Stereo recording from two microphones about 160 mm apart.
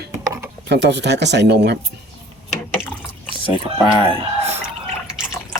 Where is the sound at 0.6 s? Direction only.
90° right.